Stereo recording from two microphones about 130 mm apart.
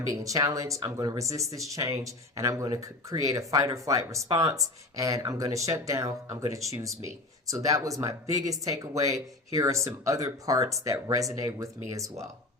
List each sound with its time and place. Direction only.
0.1 s speech: 25° right (ahead or behind)